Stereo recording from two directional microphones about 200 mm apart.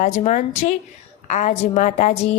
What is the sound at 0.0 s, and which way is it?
A woman's voice, 35° left (ahead or behind).